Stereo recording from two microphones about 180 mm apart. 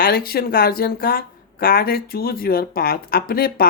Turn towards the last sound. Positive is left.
turn(degrees=55)  # may be behind; listen again after turning